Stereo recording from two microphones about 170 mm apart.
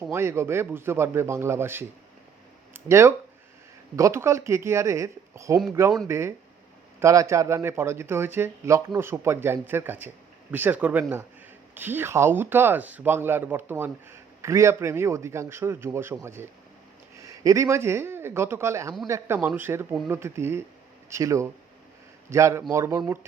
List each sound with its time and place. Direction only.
0.1 s speech: 15° right (ahead or behind)